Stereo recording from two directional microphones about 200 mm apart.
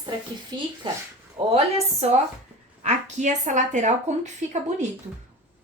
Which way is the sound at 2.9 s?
35° right (ahead or behind).